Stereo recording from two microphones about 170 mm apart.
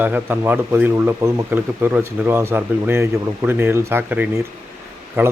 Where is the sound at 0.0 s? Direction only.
10° right (ahead or behind).